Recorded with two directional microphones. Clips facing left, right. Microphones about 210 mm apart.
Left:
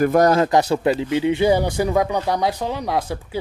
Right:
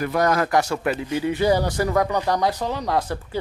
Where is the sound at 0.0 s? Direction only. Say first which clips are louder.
Left 6 dB; 45° left (ahead or behind).